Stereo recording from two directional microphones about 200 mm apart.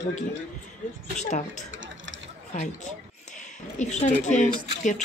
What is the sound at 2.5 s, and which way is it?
Speech, 35° left (ahead or behind).